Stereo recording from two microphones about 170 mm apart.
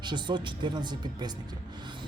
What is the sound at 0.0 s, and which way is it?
A man's voice, 25° right (ahead or behind).